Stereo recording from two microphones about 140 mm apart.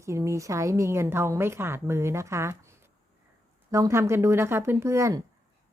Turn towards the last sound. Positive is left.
turn(degrees=-20)  # may be behind; listen again after turning